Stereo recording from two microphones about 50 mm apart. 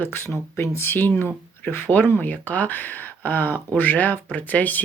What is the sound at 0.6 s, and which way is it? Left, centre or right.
Speech, left.